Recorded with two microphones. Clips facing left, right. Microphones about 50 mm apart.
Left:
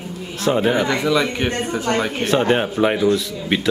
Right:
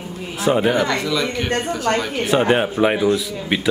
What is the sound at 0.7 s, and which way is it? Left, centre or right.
Speech, centre.